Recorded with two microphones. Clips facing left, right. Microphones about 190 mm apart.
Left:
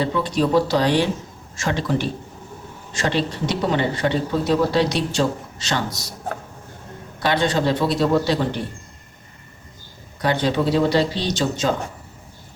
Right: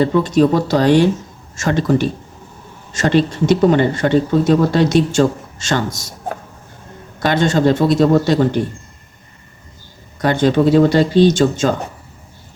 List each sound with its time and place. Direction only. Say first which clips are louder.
0.0 s speech: right 8 dB; 45° right (ahead or behind)
7.2 s speech: right 5 dB; 45° right (ahead or behind)
10.2 s speech: right 6 dB; 50° right (ahead or behind)